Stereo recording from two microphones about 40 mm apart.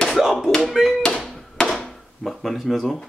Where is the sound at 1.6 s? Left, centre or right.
Centre.